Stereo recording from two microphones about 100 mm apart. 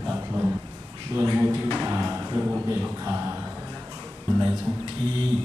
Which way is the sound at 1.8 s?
20° right (ahead or behind).